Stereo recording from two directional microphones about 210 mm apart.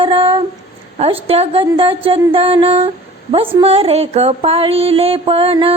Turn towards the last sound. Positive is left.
turn(degrees=-25)  # may be behind; listen again after turning